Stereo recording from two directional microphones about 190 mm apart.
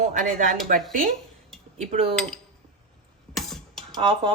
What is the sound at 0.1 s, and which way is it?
Speech, 45° right (ahead or behind).